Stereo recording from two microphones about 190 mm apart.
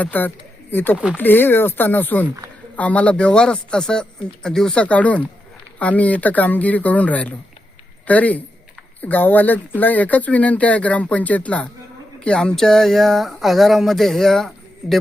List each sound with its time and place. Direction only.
0.0 s speech: 10° left (ahead or behind)